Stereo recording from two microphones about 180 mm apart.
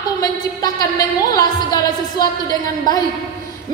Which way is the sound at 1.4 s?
20° left (ahead or behind).